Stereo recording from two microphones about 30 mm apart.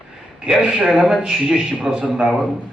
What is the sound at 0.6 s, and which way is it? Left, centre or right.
Speech, right.